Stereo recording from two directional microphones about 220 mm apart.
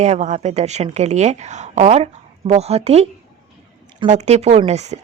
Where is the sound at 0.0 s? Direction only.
30° right (ahead or behind).